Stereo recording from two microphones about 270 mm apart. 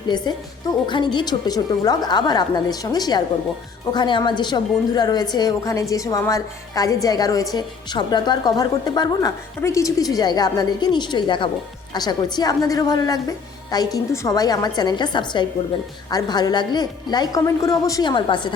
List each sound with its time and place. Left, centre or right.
0.1 s a woman's voice: centre